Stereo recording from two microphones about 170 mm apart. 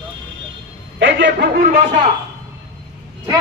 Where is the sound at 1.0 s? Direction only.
90° right.